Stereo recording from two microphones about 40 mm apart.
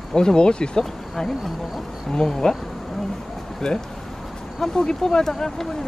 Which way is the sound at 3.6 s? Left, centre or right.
Centre.